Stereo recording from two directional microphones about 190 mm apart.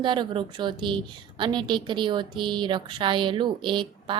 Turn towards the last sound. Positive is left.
turn(degrees=-25)  # may be behind; listen again after turning